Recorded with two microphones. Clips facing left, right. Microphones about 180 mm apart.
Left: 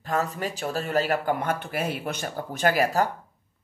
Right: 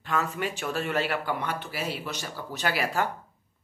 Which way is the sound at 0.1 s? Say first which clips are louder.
Left 2 dB; 40° left (ahead or behind).